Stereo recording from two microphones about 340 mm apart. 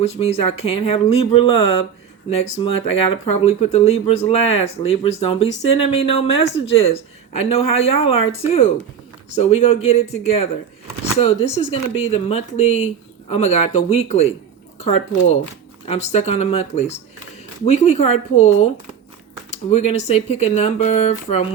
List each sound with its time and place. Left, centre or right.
0.0 s speech: centre